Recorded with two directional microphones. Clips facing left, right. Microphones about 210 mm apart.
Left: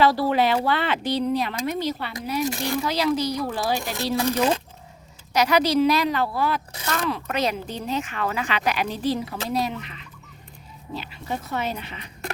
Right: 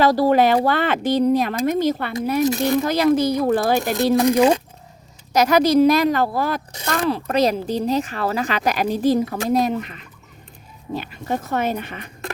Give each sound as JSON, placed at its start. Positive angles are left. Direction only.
{"t": 0.0, "sound": "speech", "side_deg": -45}
{"t": 2.6, "sound": "speech", "side_deg": -20}
{"t": 2.8, "sound": "speech", "side_deg": -50}
{"t": 5.3, "sound": "speech", "side_deg": -45}
{"t": 7.0, "sound": "speech", "side_deg": -35}